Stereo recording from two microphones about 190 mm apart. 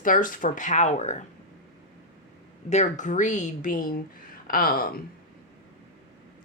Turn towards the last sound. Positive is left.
turn(degrees=50)  # may be behind; listen again after turning